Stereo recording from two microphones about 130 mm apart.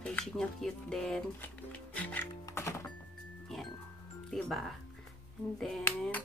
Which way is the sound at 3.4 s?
5° left (ahead or behind).